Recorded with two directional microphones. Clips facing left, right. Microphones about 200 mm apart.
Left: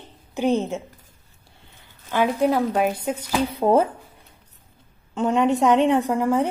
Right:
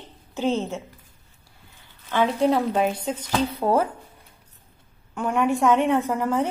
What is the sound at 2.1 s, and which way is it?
A woman's voice, 10° left (ahead or behind).